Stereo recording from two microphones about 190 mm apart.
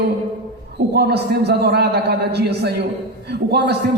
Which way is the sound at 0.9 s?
60° right (ahead or behind).